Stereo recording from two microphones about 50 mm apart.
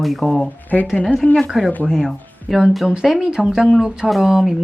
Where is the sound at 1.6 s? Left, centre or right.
Centre.